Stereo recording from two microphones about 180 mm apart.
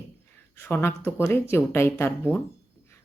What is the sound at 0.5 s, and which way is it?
Speech, 15° left (ahead or behind).